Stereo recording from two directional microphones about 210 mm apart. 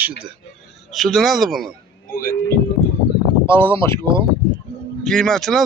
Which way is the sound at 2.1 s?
45° left (ahead or behind).